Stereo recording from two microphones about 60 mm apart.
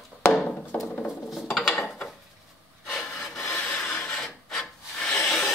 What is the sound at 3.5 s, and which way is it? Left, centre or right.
Wood, left.